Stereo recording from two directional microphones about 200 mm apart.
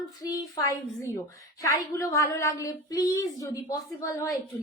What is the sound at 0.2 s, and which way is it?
Speech, 20° left (ahead or behind).